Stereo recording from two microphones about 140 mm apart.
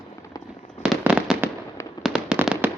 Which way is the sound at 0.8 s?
5° right (ahead or behind).